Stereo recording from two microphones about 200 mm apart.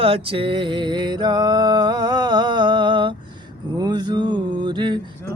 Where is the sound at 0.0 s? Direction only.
30° right (ahead or behind).